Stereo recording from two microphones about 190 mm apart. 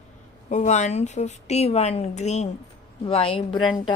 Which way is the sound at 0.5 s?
40° left (ahead or behind).